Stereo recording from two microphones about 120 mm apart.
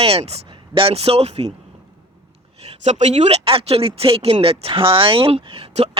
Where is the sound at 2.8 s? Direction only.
70° right (ahead or behind); by 5.4 s 45° right (ahead or behind).